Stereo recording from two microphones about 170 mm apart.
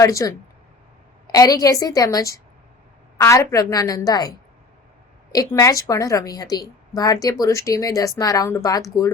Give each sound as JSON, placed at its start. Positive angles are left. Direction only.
{"t": 0.0, "sound": "a woman's voice", "side_deg": 20}